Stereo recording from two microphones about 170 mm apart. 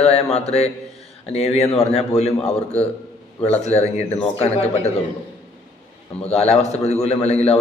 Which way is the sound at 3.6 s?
40° left (ahead or behind).